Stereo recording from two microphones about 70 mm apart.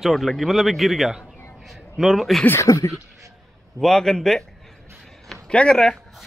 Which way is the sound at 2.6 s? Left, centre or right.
Left.